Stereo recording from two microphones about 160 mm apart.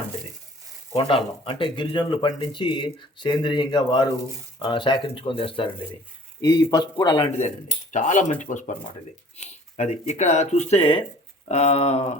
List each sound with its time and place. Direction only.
0.9 s speech: 35° left (ahead or behind)
7.9 s speech: 50° left (ahead or behind)